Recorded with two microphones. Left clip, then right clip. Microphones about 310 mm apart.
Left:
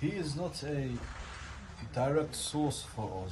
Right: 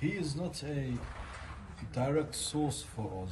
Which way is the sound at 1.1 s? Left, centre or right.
Centre.